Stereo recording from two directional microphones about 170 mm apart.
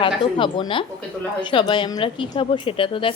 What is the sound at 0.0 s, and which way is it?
A woman's voice, 30° left (ahead or behind).